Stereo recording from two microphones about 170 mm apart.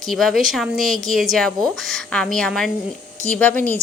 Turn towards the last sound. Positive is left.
turn(degrees=5)  # may be behind; listen again after turning